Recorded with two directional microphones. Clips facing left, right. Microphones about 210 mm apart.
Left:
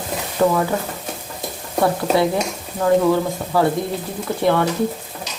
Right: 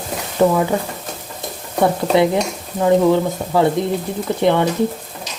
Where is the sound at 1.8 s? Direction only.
20° right (ahead or behind).